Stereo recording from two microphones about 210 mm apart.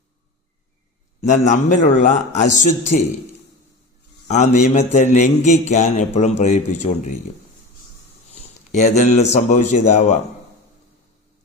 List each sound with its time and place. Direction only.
1.2 s a man's voice: 35° left (ahead or behind)
4.3 s a man's voice: 35° left (ahead or behind)
8.7 s a man's voice: 35° left (ahead or behind)